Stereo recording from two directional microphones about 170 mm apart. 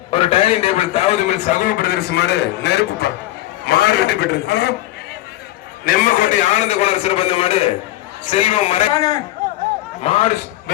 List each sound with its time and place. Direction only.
0.1 s a man's voice: 35° left (ahead or behind); by 3.1 s 85° left
3.7 s a man's voice: 70° left (ahead or behind)
5.8 s a man's voice: 55° left (ahead or behind)
8.9 s a man's voice: 20° left (ahead or behind)
10.0 s a man's voice: 35° left (ahead or behind)